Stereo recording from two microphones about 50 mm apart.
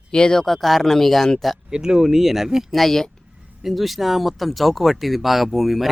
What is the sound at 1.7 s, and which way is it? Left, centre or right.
Speech, centre.